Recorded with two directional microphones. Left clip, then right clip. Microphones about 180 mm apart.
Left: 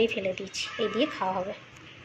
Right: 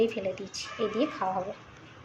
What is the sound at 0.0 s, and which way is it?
A woman's voice, centre (ahead or behind).